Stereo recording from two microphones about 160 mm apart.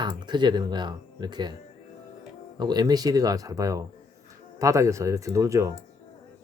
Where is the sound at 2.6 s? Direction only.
25° right (ahead or behind).